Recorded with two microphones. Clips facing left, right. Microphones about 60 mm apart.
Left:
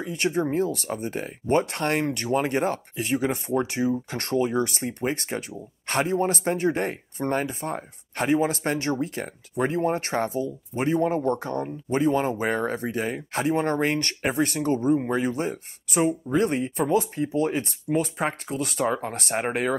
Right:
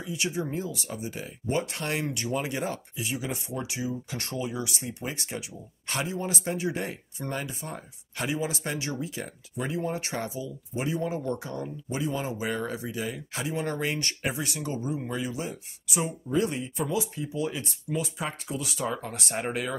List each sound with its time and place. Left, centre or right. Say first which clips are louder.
0.0 s speech: left 6 dB; left